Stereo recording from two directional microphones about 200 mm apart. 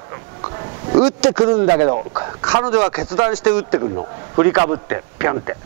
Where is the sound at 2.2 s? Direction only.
10° right (ahead or behind).